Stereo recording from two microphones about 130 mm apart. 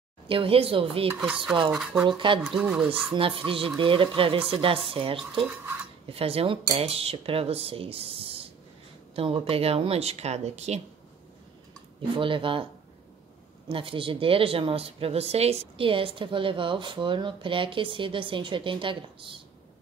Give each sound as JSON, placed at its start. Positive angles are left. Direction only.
{"t": 0.3, "sound": "speech", "side_deg": -45}
{"t": 1.2, "sound": "speech", "side_deg": -5}
{"t": 2.0, "sound": "speech", "side_deg": -40}
{"t": 2.4, "sound": "speech", "side_deg": -10}
{"t": 3.1, "sound": "speech", "side_deg": -45}
{"t": 12.0, "sound": "speech", "side_deg": -40}
{"t": 13.7, "sound": "speech", "side_deg": -40}